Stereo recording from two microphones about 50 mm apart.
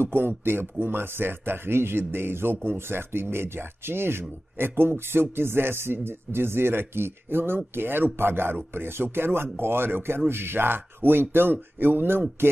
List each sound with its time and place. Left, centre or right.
0.0 s speech: right